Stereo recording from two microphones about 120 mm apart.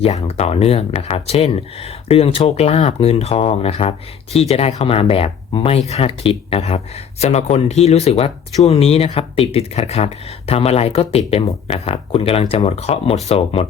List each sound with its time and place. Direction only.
0.0 s speech: 60° left (ahead or behind)
3.0 s speech: 55° left (ahead or behind)